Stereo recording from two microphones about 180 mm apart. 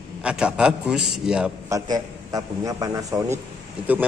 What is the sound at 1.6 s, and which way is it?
A man's voice, 20° right (ahead or behind).